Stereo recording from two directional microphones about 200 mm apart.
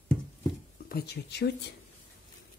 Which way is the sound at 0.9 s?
55° left (ahead or behind).